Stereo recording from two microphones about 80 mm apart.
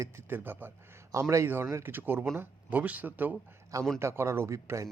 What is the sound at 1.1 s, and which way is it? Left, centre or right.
Speech, right.